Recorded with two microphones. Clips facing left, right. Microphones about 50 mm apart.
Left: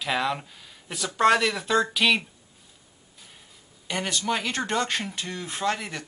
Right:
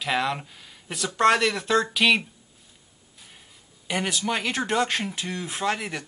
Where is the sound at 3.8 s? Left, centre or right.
Centre.